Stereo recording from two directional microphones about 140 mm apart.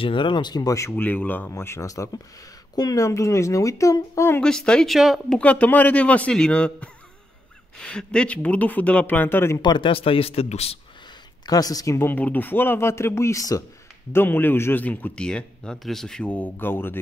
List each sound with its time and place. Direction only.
0.0 s speech: 35° left (ahead or behind); by 4.4 s 20° left (ahead or behind)
4.4 s speech: 5° left (ahead or behind)
5.4 s a man's voice: 10° left (ahead or behind)
9.6 s speech: 35° left (ahead or behind)
11.4 s a man's voice: 25° left (ahead or behind)